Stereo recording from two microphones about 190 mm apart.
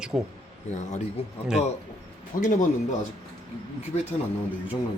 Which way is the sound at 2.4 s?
40° left (ahead or behind).